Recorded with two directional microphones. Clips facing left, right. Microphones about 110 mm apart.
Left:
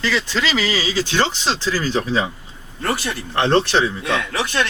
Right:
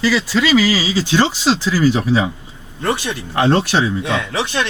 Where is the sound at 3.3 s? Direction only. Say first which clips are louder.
Right 1 dB; 10° right (ahead or behind).